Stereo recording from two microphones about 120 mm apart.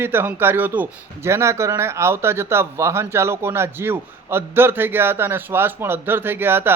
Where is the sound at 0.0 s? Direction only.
20° right (ahead or behind).